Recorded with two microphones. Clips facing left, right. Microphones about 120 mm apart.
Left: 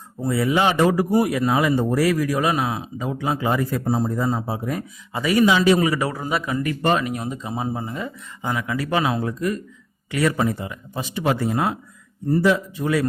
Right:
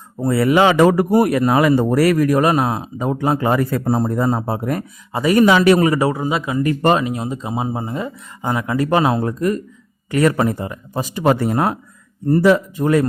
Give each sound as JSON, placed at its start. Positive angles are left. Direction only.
{"t": 0.3, "sound": "a man's voice", "side_deg": -65}
{"t": 1.1, "sound": "speech", "side_deg": -55}
{"t": 5.1, "sound": "speech", "side_deg": -45}
{"t": 5.5, "sound": "speech", "side_deg": -65}
{"t": 6.0, "sound": "speech", "side_deg": -25}
{"t": 6.7, "sound": "speech", "side_deg": -40}
{"t": 7.0, "sound": "speech", "side_deg": -25}
{"t": 11.3, "sound": "speech", "side_deg": -55}
{"t": 12.8, "sound": "speech", "side_deg": -45}